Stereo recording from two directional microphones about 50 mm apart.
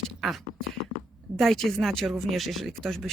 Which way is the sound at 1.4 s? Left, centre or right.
Centre.